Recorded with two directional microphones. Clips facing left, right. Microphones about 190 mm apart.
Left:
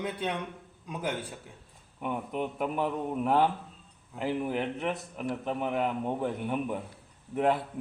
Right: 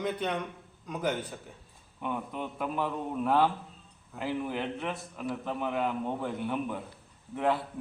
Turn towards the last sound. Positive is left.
turn(degrees=20)  # may be behind; listen again after turning